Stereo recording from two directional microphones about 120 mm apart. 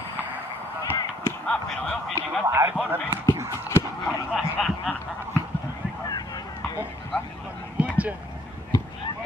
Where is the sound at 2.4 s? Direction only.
25° right (ahead or behind).